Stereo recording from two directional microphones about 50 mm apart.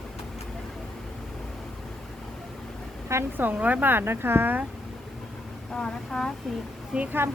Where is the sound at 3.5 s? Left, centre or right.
Right.